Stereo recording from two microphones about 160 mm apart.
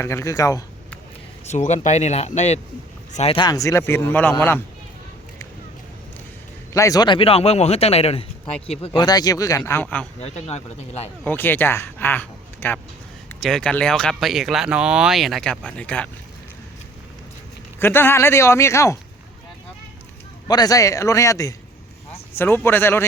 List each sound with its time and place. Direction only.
0.0 s a man's voice: 15° left (ahead or behind)
1.5 s speech: 45° left (ahead or behind)
3.3 s speech: 25° left (ahead or behind)
6.7 s a man's voice: 20° left (ahead or behind)
10.2 s speech: 45° left (ahead or behind)
11.3 s speech: 15° left (ahead or behind)
17.7 s speech: 15° left (ahead or behind)
20.5 s a man's voice: 25° left (ahead or behind)